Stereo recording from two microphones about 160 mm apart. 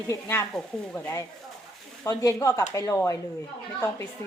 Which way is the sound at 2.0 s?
20° left (ahead or behind).